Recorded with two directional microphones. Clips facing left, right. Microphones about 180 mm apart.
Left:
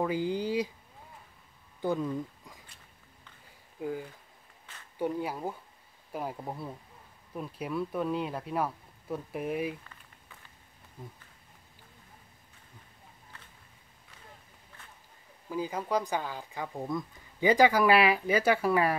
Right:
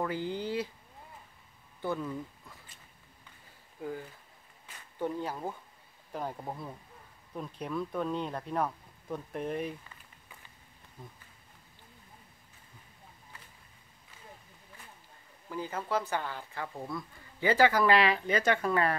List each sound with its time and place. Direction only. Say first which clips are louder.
0.0 s speech: left 4 dB; 15° left (ahead or behind)
1.8 s speech: left 4 dB; 15° left (ahead or behind)
4.9 s speech: left 2 dB; 10° left (ahead or behind)
11.0 s speech: left 3 dB; 10° left (ahead or behind)
15.5 s speech: left 3 dB; 10° left (ahead or behind)